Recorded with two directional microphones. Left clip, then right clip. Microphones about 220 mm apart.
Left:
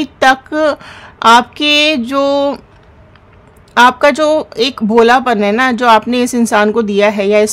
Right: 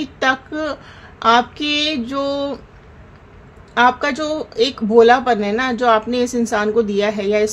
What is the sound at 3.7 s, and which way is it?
A woman's voice, 40° left (ahead or behind).